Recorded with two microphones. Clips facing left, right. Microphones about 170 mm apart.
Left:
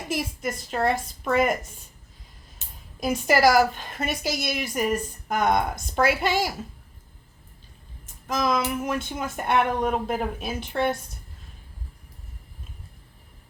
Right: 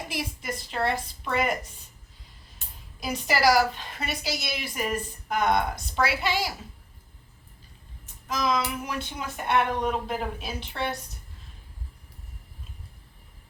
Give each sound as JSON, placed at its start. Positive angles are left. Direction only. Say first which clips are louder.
{"t": 0.1, "sound": "speech", "louder": "left 8 dB", "side_deg": 45}
{"t": 3.0, "sound": "speech", "louder": "left 5 dB", "side_deg": 50}
{"t": 8.0, "sound": "a sound", "louder": "left 2 dB", "side_deg": 50}
{"t": 8.8, "sound": "speech", "louder": "left 5 dB", "side_deg": 50}